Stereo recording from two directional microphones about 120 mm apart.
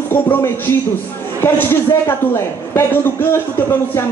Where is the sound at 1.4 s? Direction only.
20° left (ahead or behind).